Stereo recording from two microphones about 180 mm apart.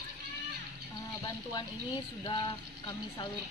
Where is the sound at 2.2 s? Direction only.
25° left (ahead or behind).